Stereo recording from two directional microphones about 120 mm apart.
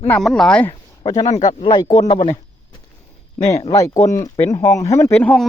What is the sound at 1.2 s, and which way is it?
Speech, 75° left (ahead or behind).